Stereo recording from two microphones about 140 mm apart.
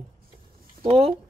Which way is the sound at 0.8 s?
45° right (ahead or behind).